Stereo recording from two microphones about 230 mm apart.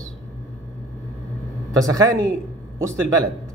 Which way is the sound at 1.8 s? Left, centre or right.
Centre.